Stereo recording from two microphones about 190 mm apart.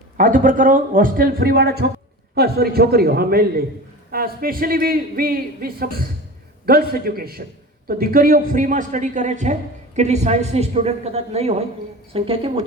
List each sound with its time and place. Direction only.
0.2 s a man's voice: 45° right (ahead or behind)